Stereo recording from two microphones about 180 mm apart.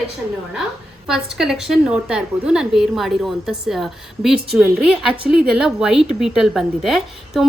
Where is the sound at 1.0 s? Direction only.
5° right (ahead or behind).